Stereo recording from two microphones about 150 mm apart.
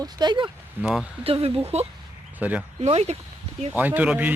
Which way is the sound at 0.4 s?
5° right (ahead or behind).